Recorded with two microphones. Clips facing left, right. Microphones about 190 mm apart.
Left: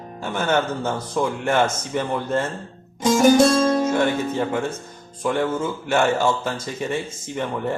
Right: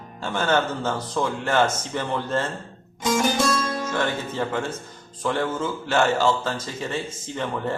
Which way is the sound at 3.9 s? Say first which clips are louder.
Left 5 dB; 15° left (ahead or behind).